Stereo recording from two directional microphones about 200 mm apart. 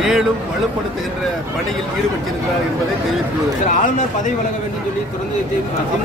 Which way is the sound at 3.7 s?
40° left (ahead or behind).